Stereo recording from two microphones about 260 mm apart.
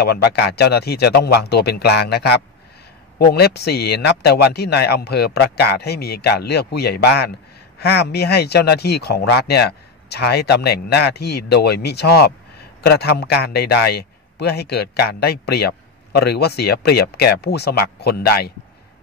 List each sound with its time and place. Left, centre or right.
0.0 s a man's voice: left